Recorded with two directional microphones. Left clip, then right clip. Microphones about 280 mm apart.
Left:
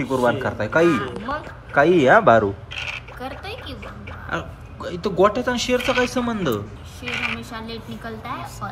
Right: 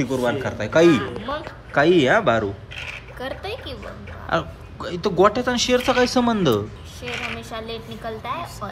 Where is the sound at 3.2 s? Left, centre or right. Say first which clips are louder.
Right 7 dB; right.